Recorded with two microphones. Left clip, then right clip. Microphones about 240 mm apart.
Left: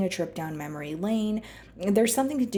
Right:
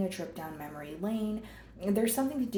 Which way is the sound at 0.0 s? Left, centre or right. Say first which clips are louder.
Left 7 dB; left.